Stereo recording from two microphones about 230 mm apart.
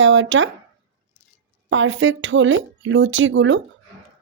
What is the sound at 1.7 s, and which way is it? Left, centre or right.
Speech, right.